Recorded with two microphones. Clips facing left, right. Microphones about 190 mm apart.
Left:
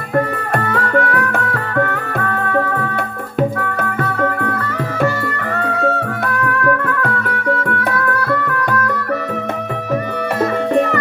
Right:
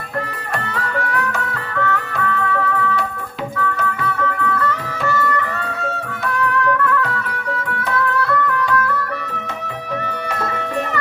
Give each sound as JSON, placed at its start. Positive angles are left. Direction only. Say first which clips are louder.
{"t": 0.7, "sound": "music", "louder": "left 8 dB", "side_deg": 55}
{"t": 7.0, "sound": "music", "louder": "left 3 dB", "side_deg": 55}